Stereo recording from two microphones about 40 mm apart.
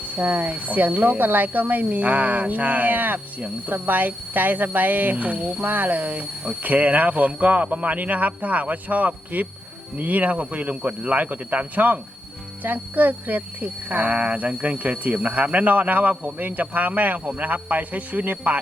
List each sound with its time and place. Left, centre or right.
0.2 s speech: right
14.3 s speech: right